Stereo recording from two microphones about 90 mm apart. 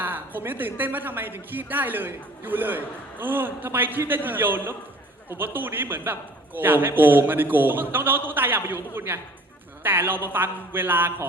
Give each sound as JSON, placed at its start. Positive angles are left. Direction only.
{"t": 0.0, "sound": "a woman's voice", "side_deg": -20}